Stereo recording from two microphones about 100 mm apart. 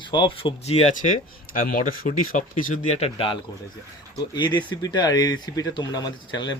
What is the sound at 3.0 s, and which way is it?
Speech, 60° left (ahead or behind).